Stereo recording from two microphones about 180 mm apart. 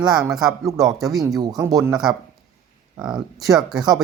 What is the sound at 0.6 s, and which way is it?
Speech, 20° right (ahead or behind).